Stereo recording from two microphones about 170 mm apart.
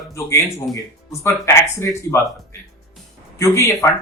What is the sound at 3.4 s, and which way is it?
Speech, 15° left (ahead or behind).